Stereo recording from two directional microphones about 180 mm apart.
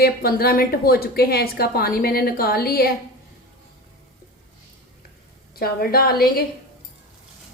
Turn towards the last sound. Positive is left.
turn(degrees=55)  # may be behind; listen again after turning